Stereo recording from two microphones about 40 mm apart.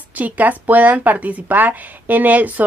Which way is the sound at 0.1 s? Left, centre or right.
Right.